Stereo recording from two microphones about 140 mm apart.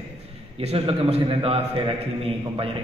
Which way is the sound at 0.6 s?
45° right (ahead or behind).